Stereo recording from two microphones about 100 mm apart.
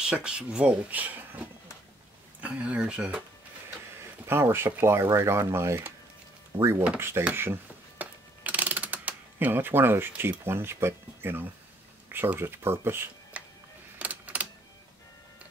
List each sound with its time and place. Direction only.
0.0 s speech: 10° right (ahead or behind)
2.4 s speech: 10° right (ahead or behind)
4.3 s speech: 25° right (ahead or behind)
7.3 s mechanisms: 25° right (ahead or behind)
12.1 s speech: 20° right (ahead or behind)
13.9 s a sound: 15° right (ahead or behind)